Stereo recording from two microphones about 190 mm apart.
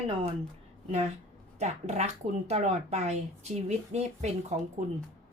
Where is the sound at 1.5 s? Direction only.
35° right (ahead or behind).